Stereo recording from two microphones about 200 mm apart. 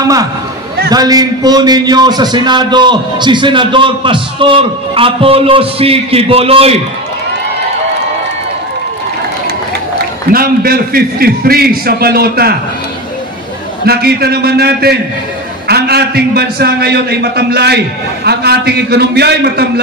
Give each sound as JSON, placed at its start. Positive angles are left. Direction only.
{"t": 0.0, "sound": "a man's voice", "side_deg": -20}
{"t": 10.3, "sound": "a man's voice", "side_deg": -50}
{"t": 13.8, "sound": "a man's voice", "side_deg": -50}